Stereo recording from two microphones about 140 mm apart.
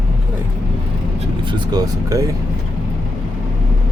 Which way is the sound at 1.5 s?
30° right (ahead or behind).